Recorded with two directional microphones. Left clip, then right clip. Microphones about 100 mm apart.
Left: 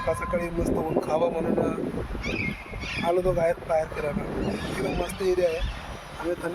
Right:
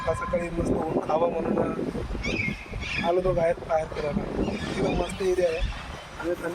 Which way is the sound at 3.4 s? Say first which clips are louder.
Even; 15° left (ahead or behind).